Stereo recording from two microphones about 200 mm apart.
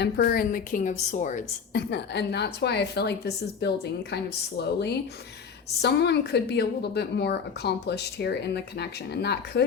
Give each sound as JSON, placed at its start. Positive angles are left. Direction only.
{"t": 0.0, "sound": "a woman's voice", "side_deg": 50}
{"t": 1.9, "sound": "a woman's voice", "side_deg": 55}